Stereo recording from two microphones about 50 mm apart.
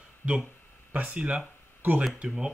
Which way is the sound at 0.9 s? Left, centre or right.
Right.